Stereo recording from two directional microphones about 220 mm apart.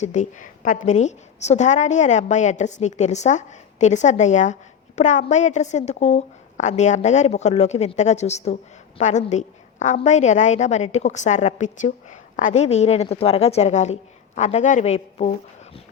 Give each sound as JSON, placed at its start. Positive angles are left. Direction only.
{"t": 0.0, "sound": "a woman's voice", "side_deg": 35}